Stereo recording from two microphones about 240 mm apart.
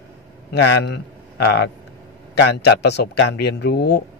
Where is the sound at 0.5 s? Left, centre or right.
Left.